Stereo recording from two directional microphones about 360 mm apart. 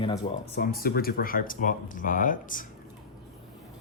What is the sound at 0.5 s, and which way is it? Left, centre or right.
Speech, left.